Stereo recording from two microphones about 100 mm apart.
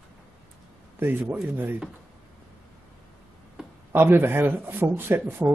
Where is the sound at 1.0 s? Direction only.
20° right (ahead or behind).